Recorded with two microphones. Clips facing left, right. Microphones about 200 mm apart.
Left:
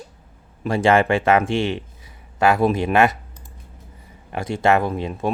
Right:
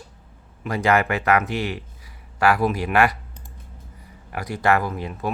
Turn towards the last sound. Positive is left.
turn(degrees=25)  # may be behind; listen again after turning